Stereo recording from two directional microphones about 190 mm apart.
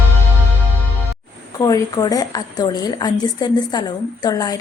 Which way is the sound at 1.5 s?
20° left (ahead or behind).